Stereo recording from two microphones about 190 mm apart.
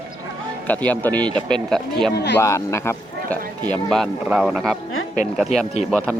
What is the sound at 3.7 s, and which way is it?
Speech, centre (ahead or behind).